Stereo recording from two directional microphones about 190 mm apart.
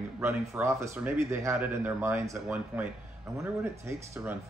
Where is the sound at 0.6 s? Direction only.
15° right (ahead or behind).